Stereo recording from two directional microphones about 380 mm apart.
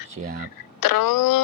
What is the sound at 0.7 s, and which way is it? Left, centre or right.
Speech, left.